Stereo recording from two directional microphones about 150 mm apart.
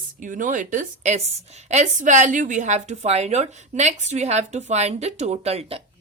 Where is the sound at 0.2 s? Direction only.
60° right (ahead or behind).